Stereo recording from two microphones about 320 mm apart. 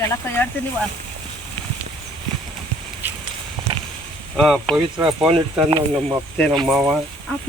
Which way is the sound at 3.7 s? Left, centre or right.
Centre.